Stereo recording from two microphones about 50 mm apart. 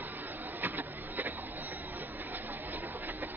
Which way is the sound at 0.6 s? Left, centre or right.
Right.